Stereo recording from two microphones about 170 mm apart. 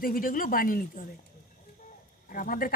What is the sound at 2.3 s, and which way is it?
Speech, 55° left (ahead or behind).